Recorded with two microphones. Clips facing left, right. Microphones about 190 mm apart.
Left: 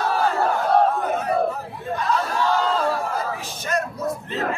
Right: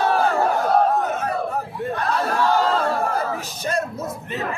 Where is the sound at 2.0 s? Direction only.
55° right (ahead or behind).